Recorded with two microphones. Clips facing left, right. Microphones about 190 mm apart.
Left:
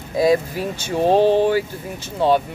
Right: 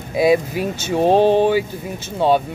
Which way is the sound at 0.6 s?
20° right (ahead or behind).